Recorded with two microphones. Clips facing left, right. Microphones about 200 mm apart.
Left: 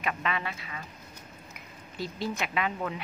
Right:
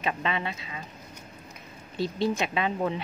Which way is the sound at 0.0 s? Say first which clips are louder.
Right 2 dB; 25° right (ahead or behind).